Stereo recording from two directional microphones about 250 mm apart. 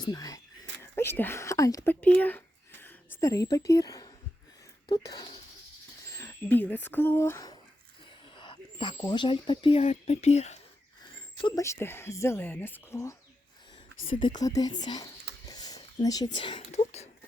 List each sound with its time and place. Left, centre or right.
0.0 s speech: centre
11.4 s speech: centre
14.3 s speech: centre